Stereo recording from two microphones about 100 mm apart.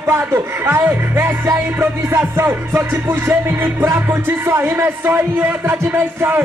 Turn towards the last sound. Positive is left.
turn(degrees=-20)  # may be behind; listen again after turning